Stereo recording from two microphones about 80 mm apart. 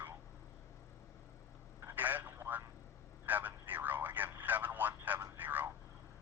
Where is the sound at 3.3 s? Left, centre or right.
Right.